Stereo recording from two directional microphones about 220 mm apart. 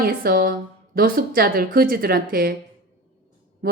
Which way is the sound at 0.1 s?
40° right (ahead or behind).